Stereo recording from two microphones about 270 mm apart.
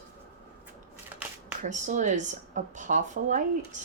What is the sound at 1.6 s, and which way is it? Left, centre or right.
Speech, right.